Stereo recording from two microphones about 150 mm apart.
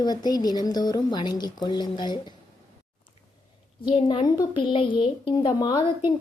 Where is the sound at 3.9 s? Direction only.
30° left (ahead or behind).